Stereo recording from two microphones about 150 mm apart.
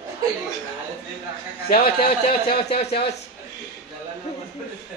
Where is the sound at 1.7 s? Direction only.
90° left.